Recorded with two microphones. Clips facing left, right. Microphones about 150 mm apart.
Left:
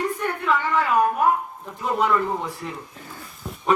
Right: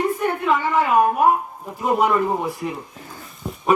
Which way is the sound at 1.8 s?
20° right (ahead or behind).